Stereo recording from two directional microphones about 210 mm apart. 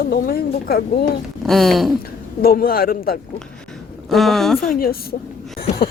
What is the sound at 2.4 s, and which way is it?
Speech, 45° left (ahead or behind).